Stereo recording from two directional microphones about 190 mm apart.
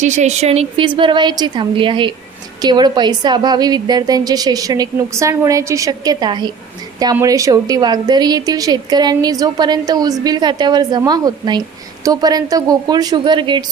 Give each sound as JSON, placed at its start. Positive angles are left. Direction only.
{"t": 0.0, "sound": "a woman's voice", "side_deg": -40}